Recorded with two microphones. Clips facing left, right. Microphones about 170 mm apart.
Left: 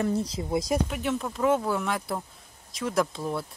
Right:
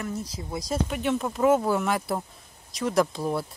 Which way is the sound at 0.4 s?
25° left (ahead or behind).